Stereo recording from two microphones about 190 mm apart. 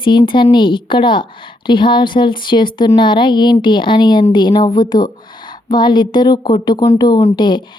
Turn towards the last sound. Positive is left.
turn(degrees=25)  # may be behind; listen again after turning